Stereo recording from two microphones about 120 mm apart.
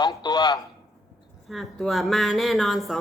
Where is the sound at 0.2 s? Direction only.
35° left (ahead or behind).